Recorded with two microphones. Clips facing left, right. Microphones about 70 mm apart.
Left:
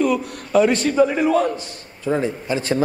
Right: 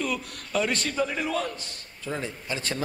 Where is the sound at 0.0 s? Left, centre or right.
Centre.